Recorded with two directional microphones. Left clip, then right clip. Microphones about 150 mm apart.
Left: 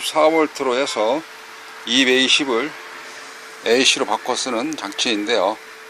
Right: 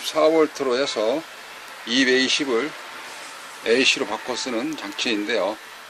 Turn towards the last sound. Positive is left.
turn(degrees=20)  # may be behind; listen again after turning